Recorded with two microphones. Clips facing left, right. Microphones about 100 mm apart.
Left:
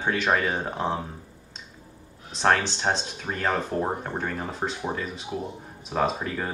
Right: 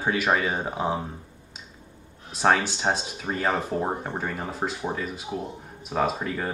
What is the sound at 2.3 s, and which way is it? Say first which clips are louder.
Speech: right 1 dB; 5° right (ahead or behind).